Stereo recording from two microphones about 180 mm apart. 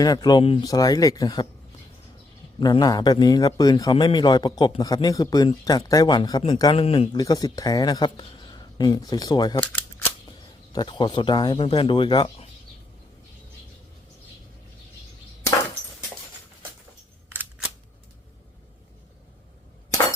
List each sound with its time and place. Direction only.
0.0 s speech: 20° left (ahead or behind)
2.6 s speech: 25° left (ahead or behind)
6.7 s speech: 35° left (ahead or behind)